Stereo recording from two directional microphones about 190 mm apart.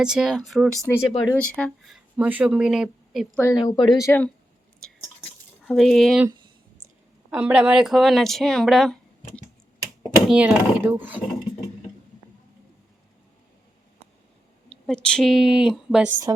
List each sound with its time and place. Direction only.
0.0 s speech: 5° right (ahead or behind)
0.9 s speech: 15° left (ahead or behind); by 3.2 s 5° right (ahead or behind)
3.3 s a woman's voice: 15° left (ahead or behind)
4.0 s speech: 10° left (ahead or behind)
4.8 s drip: 5° left (ahead or behind)
5.6 s speech: centre (ahead or behind)
7.3 s speech: 10° right (ahead or behind)
14.8 s speech: 5° left (ahead or behind)